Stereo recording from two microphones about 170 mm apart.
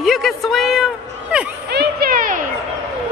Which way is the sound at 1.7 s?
65° right (ahead or behind).